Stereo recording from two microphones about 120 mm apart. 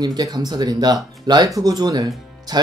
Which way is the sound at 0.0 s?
35° right (ahead or behind).